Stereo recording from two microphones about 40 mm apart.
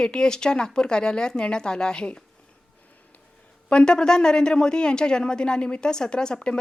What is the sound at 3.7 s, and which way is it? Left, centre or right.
Speech, left.